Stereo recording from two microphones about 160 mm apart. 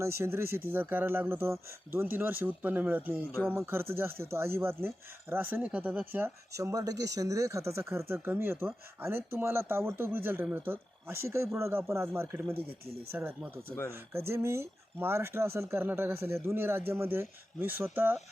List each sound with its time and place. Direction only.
0.2 s speech: 15° right (ahead or behind)